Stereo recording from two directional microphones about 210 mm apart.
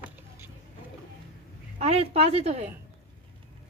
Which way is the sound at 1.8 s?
30° right (ahead or behind).